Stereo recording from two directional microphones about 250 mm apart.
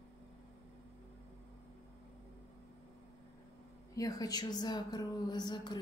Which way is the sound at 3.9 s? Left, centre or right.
Centre.